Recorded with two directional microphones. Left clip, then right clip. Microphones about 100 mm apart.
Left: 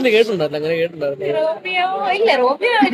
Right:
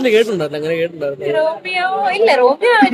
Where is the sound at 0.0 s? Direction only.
35° right (ahead or behind).